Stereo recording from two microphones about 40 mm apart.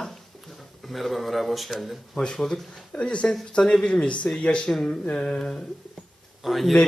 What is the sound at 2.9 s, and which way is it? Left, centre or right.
Speech, left.